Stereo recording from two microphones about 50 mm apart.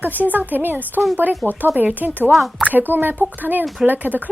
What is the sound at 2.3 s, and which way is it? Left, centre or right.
Speech, centre.